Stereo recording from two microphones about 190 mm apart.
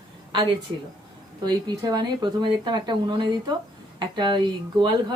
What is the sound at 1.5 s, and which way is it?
A woman's voice, 20° right (ahead or behind).